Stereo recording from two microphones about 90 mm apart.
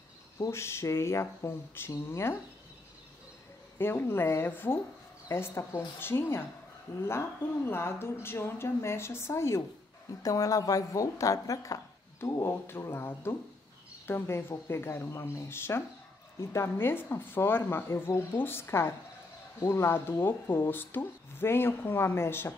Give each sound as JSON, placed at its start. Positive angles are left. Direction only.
{"t": 0.5, "sound": "speech", "side_deg": 30}
{"t": 3.7, "sound": "speech", "side_deg": 25}
{"t": 10.2, "sound": "speech", "side_deg": 40}